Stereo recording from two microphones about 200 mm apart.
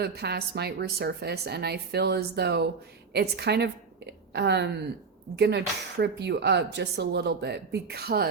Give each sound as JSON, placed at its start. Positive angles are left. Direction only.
{"t": 0.0, "sound": "a woman's voice", "side_deg": -55}